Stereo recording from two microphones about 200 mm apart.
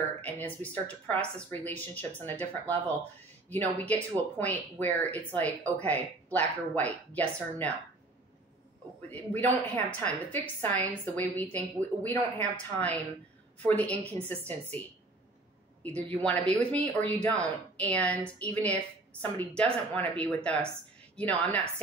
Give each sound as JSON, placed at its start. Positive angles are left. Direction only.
{"t": 0.2, "sound": "speech", "side_deg": 10}
{"t": 3.8, "sound": "speech", "side_deg": 10}
{"t": 9.1, "sound": "speech", "side_deg": 10}